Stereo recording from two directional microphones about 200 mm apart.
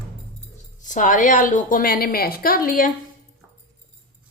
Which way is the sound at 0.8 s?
40° left (ahead or behind).